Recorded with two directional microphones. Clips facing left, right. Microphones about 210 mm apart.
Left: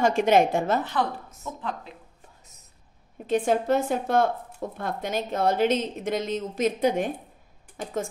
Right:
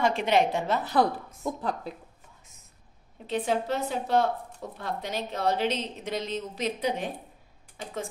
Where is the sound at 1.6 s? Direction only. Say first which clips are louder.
Right 2 dB; 35° right (ahead or behind).